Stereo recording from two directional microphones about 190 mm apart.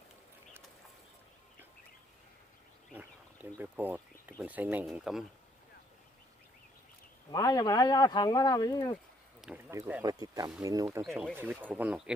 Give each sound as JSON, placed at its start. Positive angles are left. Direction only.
{"t": 3.6, "sound": "speech", "side_deg": -10}
{"t": 7.3, "sound": "speech", "side_deg": 20}
{"t": 9.6, "sound": "speech", "side_deg": -10}